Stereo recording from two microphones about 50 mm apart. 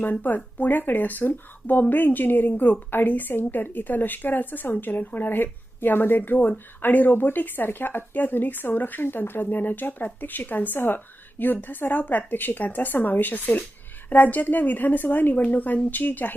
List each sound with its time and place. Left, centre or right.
0.0 s speech: left